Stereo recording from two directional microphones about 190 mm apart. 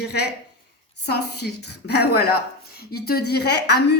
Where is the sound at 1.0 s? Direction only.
60° left (ahead or behind).